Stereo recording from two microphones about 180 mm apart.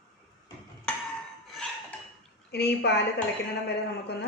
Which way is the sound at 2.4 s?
65° left (ahead or behind).